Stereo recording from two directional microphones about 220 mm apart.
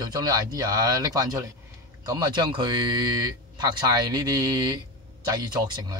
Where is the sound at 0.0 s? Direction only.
15° right (ahead or behind).